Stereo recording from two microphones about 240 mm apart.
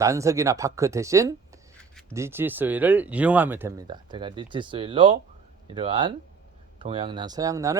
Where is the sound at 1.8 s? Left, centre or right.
Centre.